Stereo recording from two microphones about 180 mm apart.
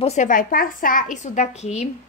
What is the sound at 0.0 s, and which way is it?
A woman's voice, 40° left (ahead or behind).